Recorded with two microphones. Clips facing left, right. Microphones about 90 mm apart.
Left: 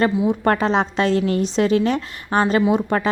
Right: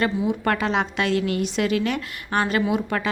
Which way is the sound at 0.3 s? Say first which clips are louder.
Left 5 dB; 35° left (ahead or behind).